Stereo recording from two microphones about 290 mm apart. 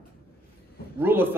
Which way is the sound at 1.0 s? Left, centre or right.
Centre.